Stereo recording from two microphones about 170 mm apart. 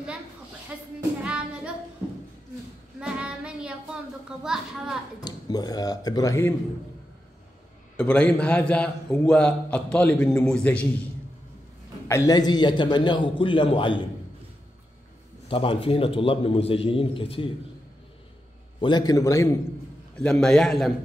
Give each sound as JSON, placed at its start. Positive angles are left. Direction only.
{"t": 0.7, "sound": "speech", "side_deg": -5}
{"t": 1.2, "sound": "music", "side_deg": -5}
{"t": 3.0, "sound": "child singing", "side_deg": -5}
{"t": 4.4, "sound": "a man's voice", "side_deg": -5}
{"t": 5.2, "sound": "a man's voice", "side_deg": 25}
{"t": 8.0, "sound": "a man's voice", "side_deg": 5}
{"t": 12.1, "sound": "a man's voice", "side_deg": 20}
{"t": 15.4, "sound": "a man's voice", "side_deg": 30}
{"t": 18.8, "sound": "a man's voice", "side_deg": 25}
{"t": 20.2, "sound": "a man's voice", "side_deg": 5}